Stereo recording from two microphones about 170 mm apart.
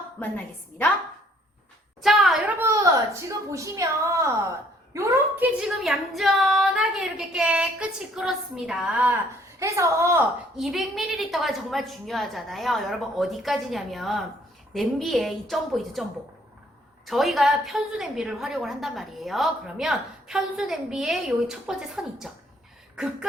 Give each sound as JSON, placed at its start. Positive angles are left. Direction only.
{"t": 0.2, "sound": "a woman's voice", "side_deg": 10}
{"t": 2.0, "sound": "a sound", "side_deg": 0}
{"t": 2.6, "sound": "a woman's voice", "side_deg": -20}
{"t": 4.9, "sound": "a woman's voice", "side_deg": -10}
{"t": 10.6, "sound": "a woman's voice", "side_deg": 0}
{"t": 17.1, "sound": "a woman's voice", "side_deg": 0}